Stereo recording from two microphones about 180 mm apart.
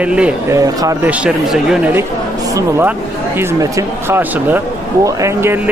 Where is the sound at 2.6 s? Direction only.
15° right (ahead or behind).